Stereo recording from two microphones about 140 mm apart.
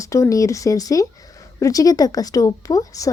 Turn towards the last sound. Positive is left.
turn(degrees=25)  # may be behind; listen again after turning